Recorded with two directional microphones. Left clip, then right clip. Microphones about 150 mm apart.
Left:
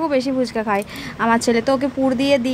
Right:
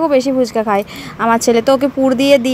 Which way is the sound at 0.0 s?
15° right (ahead or behind).